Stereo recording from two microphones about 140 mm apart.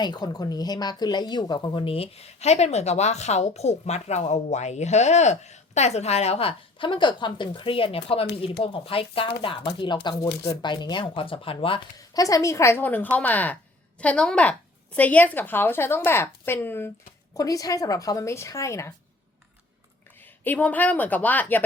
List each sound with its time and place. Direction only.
0.0 s speech: 30° left (ahead or behind)
12.1 s a woman's voice: 25° left (ahead or behind)
20.2 s a woman's voice: 15° left (ahead or behind)